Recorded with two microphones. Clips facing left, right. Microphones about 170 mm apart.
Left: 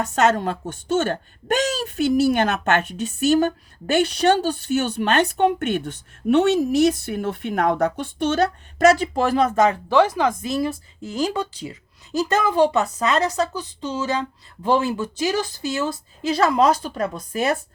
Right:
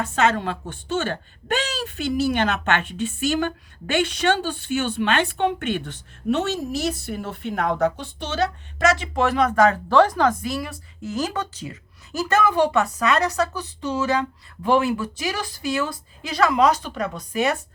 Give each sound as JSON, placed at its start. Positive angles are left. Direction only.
{"t": 0.0, "sound": "speech", "side_deg": 45}
{"t": 6.5, "sound": "a woman's voice", "side_deg": 60}
{"t": 9.0, "sound": "speech", "side_deg": 35}
{"t": 9.9, "sound": "speech", "side_deg": 5}
{"t": 10.4, "sound": "speech", "side_deg": 25}
{"t": 12.3, "sound": "speech", "side_deg": 20}